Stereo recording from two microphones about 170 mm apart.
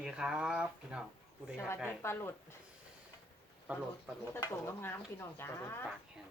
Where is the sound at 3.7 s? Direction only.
10° right (ahead or behind).